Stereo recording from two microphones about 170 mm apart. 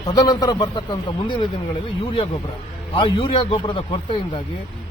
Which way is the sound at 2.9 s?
30° left (ahead or behind).